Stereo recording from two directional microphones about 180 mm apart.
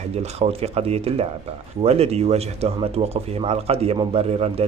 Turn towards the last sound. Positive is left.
turn(degrees=-35)  # may be behind; listen again after turning